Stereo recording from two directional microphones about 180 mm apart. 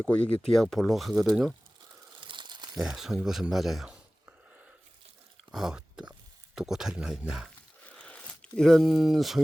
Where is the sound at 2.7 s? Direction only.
Centre (ahead or behind).